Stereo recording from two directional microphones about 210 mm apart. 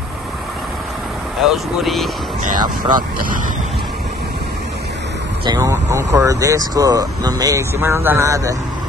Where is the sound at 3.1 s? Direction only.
40° right (ahead or behind).